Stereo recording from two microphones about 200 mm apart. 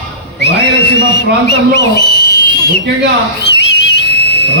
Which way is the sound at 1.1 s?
55° left (ahead or behind).